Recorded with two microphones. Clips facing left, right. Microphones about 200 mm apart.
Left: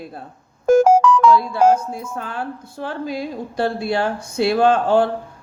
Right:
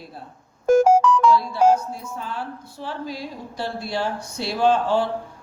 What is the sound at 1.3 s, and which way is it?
Speech, 55° left (ahead or behind).